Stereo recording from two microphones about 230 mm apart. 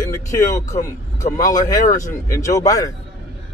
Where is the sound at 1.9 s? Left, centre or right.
Centre.